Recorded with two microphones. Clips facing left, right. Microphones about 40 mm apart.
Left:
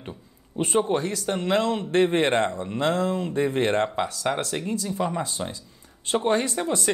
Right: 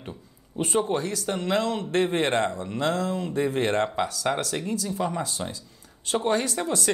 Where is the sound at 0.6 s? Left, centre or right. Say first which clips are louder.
Left 2 dB; left.